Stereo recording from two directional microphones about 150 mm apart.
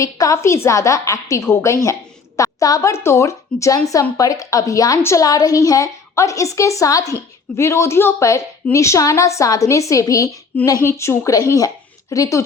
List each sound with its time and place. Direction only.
0.0 s a woman's voice: 20° left (ahead or behind)